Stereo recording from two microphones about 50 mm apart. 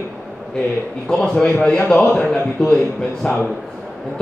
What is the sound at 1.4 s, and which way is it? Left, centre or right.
Speech, left.